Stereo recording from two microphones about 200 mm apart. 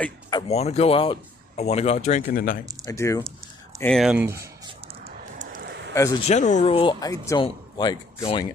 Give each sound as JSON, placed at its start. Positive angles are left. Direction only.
{"t": 0.3, "sound": "speech", "side_deg": 25}
{"t": 2.8, "sound": "speech", "side_deg": 15}
{"t": 3.8, "sound": "speech", "side_deg": 0}
{"t": 5.0, "sound": "a sound", "side_deg": -40}
{"t": 5.6, "sound": "a sound", "side_deg": -60}
{"t": 6.2, "sound": "speech", "side_deg": 35}